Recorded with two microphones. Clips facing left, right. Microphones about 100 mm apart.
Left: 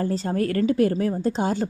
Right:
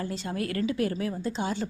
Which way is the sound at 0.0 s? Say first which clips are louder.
Left 8 dB; 40° left (ahead or behind).